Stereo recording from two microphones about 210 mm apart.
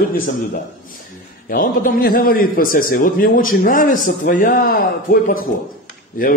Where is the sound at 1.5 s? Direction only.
40° left (ahead or behind).